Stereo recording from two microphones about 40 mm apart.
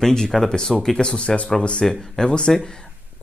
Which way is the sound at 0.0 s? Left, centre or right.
Centre.